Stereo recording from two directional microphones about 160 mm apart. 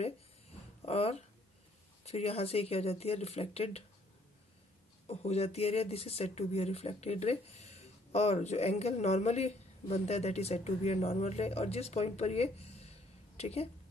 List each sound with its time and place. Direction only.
0.0 s a sound: 40° left (ahead or behind)
2.0 s speech: 40° left (ahead or behind)
5.0 s a woman's voice: 40° left (ahead or behind)